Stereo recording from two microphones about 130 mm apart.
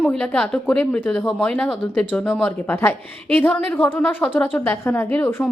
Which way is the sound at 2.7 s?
20° left (ahead or behind).